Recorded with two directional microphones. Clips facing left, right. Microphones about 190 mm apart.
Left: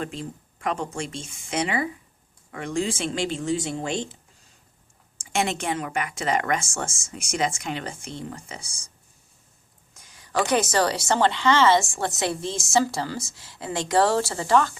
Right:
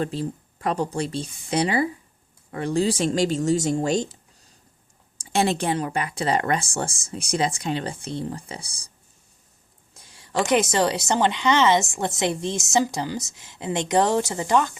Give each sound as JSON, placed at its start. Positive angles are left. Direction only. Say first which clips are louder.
{"t": 0.0, "sound": "speech", "louder": "right 5 dB", "side_deg": -35}
{"t": 9.9, "sound": "a woman's voice", "louder": "even", "side_deg": -30}